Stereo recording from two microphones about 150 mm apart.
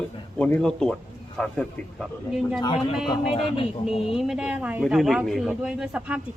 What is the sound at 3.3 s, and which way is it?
Speech, 40° left (ahead or behind).